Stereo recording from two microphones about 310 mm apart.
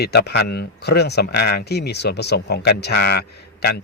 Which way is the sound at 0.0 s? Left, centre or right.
Left.